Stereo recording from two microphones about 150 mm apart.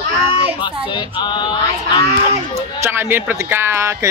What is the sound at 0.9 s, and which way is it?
Music, 30° left (ahead or behind).